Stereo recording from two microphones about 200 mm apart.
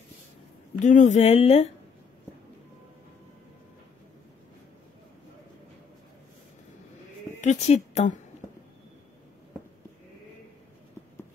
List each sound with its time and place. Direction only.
0.7 s speech: 35° left (ahead or behind)
7.3 s a woman's voice: 35° left (ahead or behind)